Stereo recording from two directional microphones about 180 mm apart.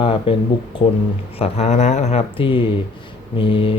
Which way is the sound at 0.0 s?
30° left (ahead or behind).